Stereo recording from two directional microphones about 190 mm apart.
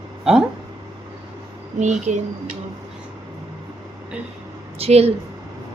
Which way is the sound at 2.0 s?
40° right (ahead or behind).